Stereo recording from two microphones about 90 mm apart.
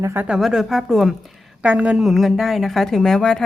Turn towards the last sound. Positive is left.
turn(degrees=5)  # may be behind; listen again after turning